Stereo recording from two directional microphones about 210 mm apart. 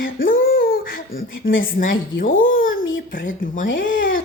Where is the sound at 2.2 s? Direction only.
40° left (ahead or behind).